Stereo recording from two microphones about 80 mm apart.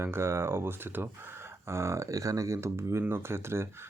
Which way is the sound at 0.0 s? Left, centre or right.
Right.